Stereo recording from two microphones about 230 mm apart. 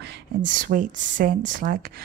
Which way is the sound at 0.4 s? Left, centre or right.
Right.